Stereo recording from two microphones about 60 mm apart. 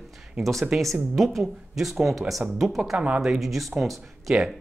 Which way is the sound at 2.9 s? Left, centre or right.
Right.